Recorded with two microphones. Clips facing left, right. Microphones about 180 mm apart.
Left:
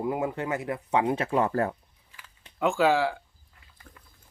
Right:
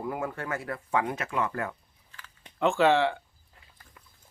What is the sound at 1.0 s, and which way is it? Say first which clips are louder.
Speech: left 5 dB; 30° left (ahead or behind).